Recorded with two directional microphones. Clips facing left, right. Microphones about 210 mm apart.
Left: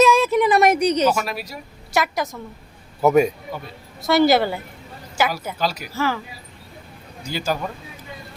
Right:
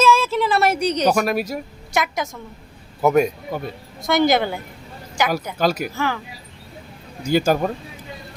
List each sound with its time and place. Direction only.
0.0 s a sound: 15° left (ahead or behind)
1.1 s speech: 50° right (ahead or behind)
1.9 s a woman's voice: centre (ahead or behind)
5.5 s speech: 50° right (ahead or behind)
5.9 s a woman's voice: 5° left (ahead or behind)
7.3 s speech: 50° right (ahead or behind)